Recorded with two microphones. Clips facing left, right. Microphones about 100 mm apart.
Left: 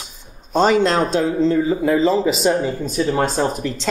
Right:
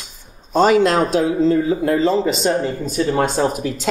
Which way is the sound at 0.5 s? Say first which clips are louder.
Right 2 dB; 5° right (ahead or behind).